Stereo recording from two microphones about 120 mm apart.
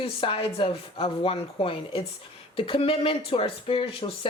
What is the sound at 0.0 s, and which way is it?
Speech, 50° left (ahead or behind).